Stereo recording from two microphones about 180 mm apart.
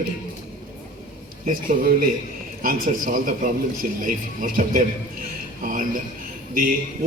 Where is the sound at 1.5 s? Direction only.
50° right (ahead or behind).